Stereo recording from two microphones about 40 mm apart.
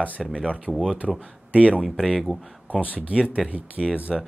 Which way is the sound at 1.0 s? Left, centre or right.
Centre.